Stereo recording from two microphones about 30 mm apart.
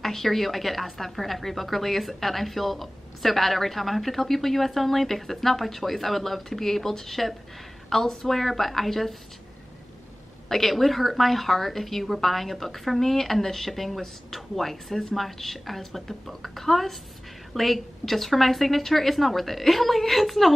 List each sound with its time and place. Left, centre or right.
0.0 s a woman's voice: centre
10.5 s a woman's voice: centre